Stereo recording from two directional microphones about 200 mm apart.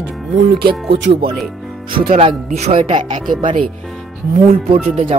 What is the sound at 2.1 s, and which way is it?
Speech, 30° right (ahead or behind).